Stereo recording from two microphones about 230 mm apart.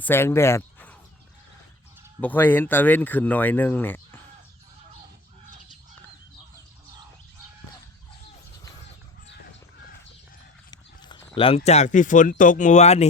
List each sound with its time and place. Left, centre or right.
0.0 s speech: centre
2.2 s speech: centre
10.7 s clip-clop: centre
11.3 s speech: left